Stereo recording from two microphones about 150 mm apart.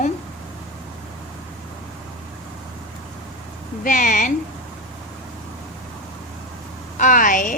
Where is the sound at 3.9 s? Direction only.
60° left (ahead or behind).